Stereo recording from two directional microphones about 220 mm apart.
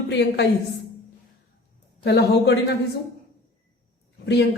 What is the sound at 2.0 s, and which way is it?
Speech, 50° left (ahead or behind).